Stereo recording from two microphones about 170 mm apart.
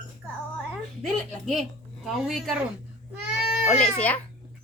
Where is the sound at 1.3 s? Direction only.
Centre (ahead or behind).